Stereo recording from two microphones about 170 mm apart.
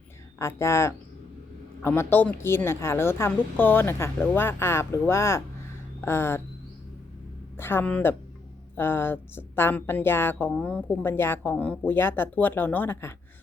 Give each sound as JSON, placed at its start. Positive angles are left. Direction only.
{"t": 0.3, "sound": "speech", "side_deg": 15}
{"t": 7.5, "sound": "speech", "side_deg": 15}